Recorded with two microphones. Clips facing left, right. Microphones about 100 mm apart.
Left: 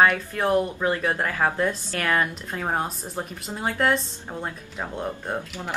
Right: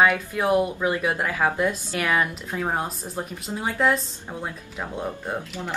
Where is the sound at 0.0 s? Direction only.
10° right (ahead or behind).